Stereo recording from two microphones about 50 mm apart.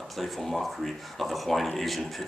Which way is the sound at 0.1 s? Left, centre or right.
Centre.